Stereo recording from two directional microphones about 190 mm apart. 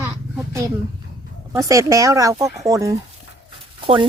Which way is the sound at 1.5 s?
15° right (ahead or behind).